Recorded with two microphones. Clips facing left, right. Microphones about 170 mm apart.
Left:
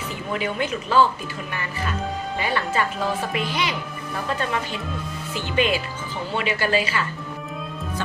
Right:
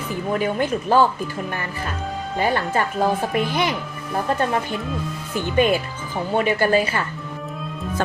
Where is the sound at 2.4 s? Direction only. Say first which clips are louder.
Right 4 dB; 45° right (ahead or behind).